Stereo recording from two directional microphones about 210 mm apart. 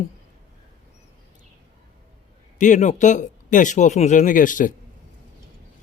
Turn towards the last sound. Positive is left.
turn(degrees=40)  # may be behind; listen again after turning